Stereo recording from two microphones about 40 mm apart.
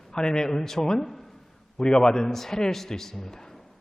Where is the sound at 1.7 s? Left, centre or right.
Centre.